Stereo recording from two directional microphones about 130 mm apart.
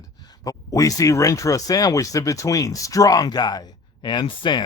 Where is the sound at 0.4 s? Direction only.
25° left (ahead or behind).